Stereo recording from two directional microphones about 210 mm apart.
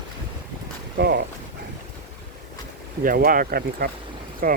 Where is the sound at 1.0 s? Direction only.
50° right (ahead or behind).